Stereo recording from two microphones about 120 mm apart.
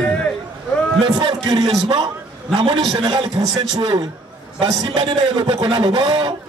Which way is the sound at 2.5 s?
45° right (ahead or behind).